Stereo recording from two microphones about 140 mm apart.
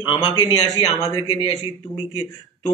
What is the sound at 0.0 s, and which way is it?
Speech, 35° left (ahead or behind).